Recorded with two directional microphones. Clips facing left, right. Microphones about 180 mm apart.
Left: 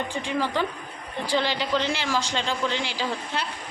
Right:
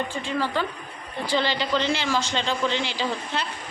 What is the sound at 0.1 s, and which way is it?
A man's voice, 15° left (ahead or behind).